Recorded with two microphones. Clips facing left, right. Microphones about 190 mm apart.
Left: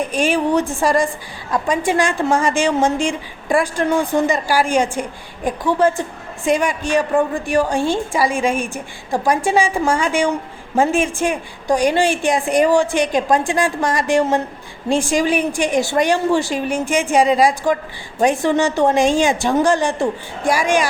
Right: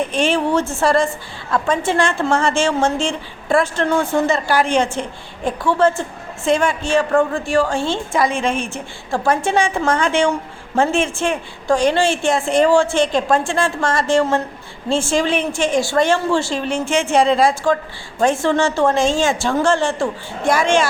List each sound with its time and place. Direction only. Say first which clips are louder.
0.1 s a woman's voice: even; 10° left (ahead or behind)